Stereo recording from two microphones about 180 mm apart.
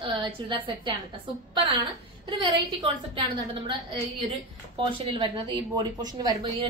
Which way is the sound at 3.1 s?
25° right (ahead or behind).